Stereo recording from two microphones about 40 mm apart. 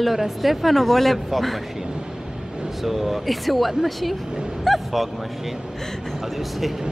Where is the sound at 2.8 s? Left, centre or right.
Centre.